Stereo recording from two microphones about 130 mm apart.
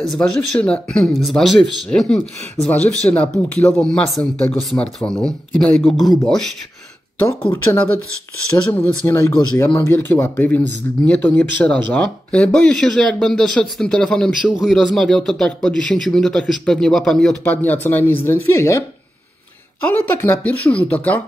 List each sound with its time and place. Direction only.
0.1 s a man's voice: 5° left (ahead or behind)
7.5 s a man's voice: 15° left (ahead or behind)